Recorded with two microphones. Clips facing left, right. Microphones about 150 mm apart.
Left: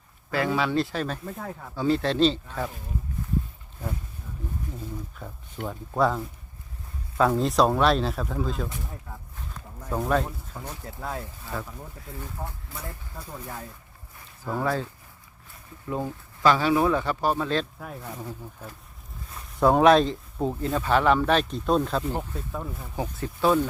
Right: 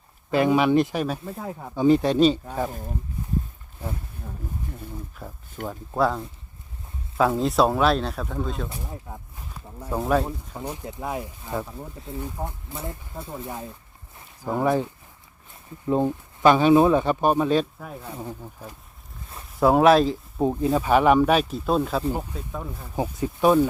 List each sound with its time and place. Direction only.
0.3 s speech: 20° right (ahead or behind)
5.2 s speech: 5° right (ahead or behind)
8.7 s speech: 20° right (ahead or behind)
14.2 s a sound: 20° right (ahead or behind)
15.9 s speech: 20° right (ahead or behind)
17.7 s speech: centre (ahead or behind)
19.5 s speech: 5° right (ahead or behind)
20.4 s speech: 15° right (ahead or behind)
22.5 s speech: centre (ahead or behind)
23.0 s speech: 15° right (ahead or behind)